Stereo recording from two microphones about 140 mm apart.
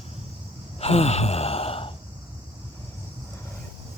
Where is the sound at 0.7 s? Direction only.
45° left (ahead or behind).